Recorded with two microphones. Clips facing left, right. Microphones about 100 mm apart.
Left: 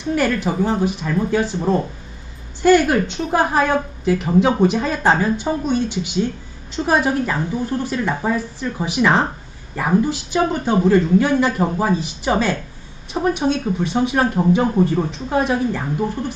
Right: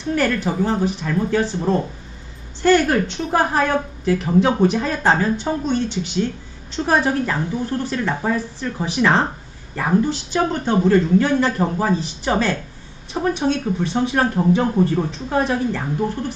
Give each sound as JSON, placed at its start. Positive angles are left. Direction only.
{"t": 0.1, "sound": "a woman's voice", "side_deg": 15}